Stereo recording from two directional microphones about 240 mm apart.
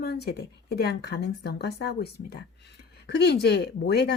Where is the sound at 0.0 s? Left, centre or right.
Left.